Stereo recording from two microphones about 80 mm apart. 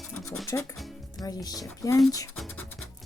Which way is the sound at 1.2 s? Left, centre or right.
Left.